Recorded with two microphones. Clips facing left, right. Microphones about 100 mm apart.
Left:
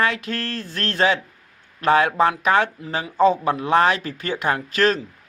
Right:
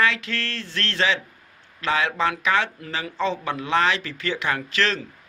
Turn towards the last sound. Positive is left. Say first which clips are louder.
# left 5 dB
turn(degrees=45)  # may be behind; listen again after turning